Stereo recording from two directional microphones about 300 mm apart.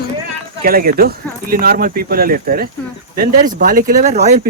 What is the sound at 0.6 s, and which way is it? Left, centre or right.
Speech, right.